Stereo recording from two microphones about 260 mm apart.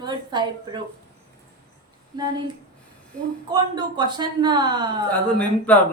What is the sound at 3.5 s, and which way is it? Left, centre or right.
A woman's voice, centre.